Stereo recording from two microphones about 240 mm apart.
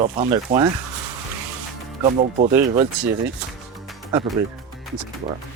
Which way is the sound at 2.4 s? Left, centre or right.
Right.